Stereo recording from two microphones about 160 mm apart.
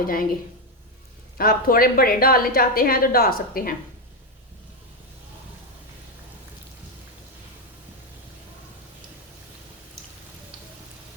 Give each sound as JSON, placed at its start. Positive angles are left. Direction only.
{"t": 0.0, "sound": "a woman's voice", "side_deg": 60}
{"t": 1.4, "sound": "a woman's voice", "side_deg": 65}